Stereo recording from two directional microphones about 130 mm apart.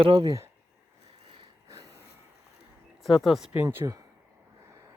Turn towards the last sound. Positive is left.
turn(degrees=-20)  # may be behind; listen again after turning